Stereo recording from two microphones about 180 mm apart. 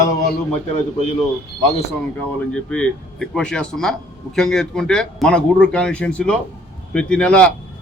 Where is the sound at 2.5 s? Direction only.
5° left (ahead or behind).